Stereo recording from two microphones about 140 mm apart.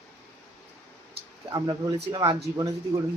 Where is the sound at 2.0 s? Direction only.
35° right (ahead or behind).